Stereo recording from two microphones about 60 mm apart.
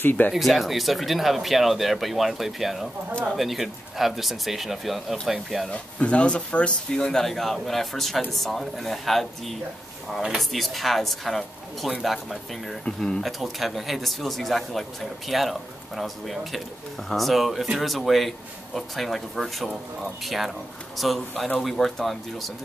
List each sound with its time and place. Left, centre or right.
0.0 s speech: left
0.3 s speech: centre
5.7 s speech: centre
12.8 s speech: centre
13.2 s speech: centre